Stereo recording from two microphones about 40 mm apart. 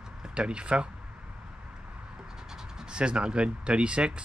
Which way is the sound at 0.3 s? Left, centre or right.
Right.